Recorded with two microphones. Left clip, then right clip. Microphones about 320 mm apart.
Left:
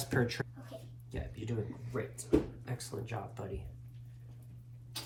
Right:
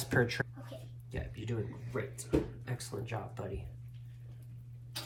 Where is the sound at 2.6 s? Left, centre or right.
Centre.